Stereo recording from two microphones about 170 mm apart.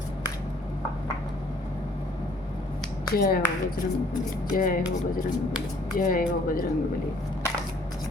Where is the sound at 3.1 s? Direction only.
60° left (ahead or behind).